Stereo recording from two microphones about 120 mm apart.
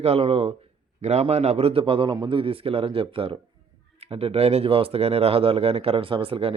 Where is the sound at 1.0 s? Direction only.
65° right (ahead or behind).